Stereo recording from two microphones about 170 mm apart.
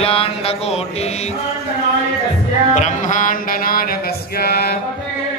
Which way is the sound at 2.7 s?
45° left (ahead or behind).